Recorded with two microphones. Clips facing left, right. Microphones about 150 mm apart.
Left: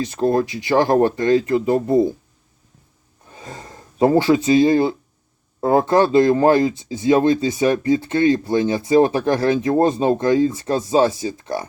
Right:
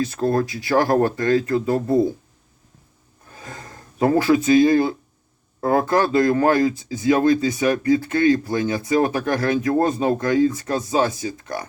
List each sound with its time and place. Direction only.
0.0 s speech: 25° left (ahead or behind)
3.3 s speech: 25° left (ahead or behind)